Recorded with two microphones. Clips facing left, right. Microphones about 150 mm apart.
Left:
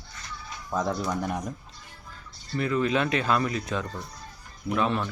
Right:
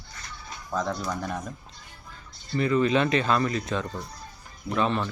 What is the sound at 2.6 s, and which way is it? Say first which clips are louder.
Speech: right 3 dB; centre (ahead or behind).